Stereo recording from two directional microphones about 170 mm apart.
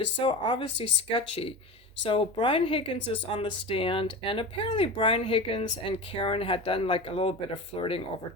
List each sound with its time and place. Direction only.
0.3 s speech: 25° left (ahead or behind)